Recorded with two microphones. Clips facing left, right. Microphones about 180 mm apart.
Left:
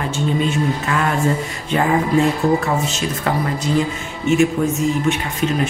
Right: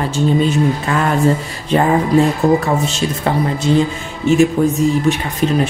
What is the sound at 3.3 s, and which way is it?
Speech, 25° right (ahead or behind).